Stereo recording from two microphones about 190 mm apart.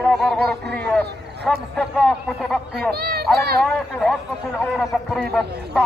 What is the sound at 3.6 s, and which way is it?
Speech, centre (ahead or behind).